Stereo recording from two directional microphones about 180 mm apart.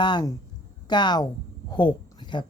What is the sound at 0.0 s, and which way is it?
A woman's voice, 25° left (ahead or behind).